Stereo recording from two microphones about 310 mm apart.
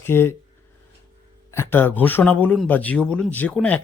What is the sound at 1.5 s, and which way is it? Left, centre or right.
Speech, centre.